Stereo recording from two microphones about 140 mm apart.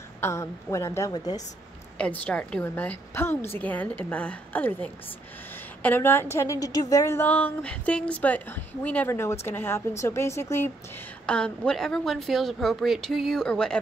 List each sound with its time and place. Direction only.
0.2 s a woman's voice: 20° left (ahead or behind)
2.0 s a woman's voice: 10° left (ahead or behind); by 7.2 s 25° left (ahead or behind)
7.2 s a woman's voice: 10° left (ahead or behind)
11.2 s a woman's voice: 5° left (ahead or behind)